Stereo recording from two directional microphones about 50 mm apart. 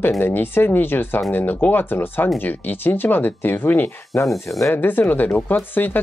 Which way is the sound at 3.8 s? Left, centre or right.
Left.